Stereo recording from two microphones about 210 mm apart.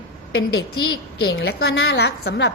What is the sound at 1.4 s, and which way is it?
A woman's voice, 55° left (ahead or behind).